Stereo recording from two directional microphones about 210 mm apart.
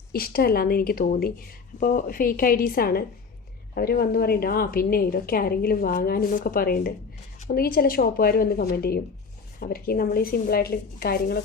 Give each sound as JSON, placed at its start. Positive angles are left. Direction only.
{"t": 0.1, "sound": "a woman's voice", "side_deg": 45}